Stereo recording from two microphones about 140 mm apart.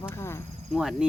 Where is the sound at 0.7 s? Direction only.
Centre (ahead or behind).